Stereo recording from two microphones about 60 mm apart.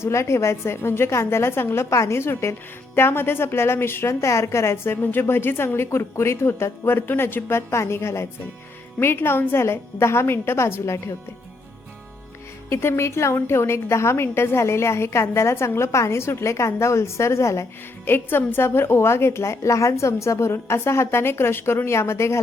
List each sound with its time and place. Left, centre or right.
0.0 s speech: left
1.9 s a woman's voice: left
2.1 s speech: left
12.7 s speech: left
18.0 s speech: left